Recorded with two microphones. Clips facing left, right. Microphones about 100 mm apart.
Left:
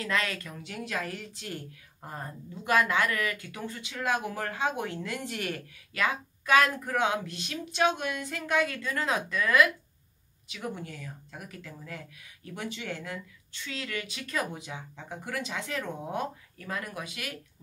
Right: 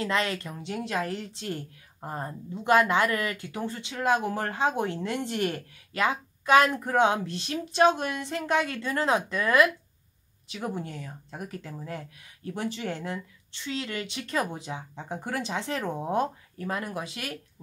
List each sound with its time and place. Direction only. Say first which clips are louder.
0.0 s a woman's voice: right 3 dB; 30° right (ahead or behind)